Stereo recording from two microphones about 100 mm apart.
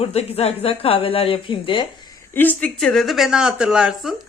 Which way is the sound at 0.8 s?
70° left (ahead or behind).